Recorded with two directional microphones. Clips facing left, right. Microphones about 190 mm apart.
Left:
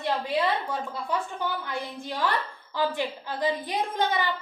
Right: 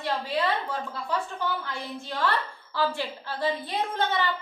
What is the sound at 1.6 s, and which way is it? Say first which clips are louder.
A woman's voice: left 2 dB; 15° left (ahead or behind).